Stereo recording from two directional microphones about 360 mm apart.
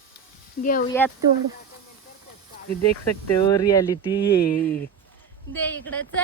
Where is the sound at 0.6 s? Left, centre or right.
Left.